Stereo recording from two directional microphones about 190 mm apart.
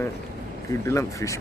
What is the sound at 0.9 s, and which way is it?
Speech, 15° left (ahead or behind).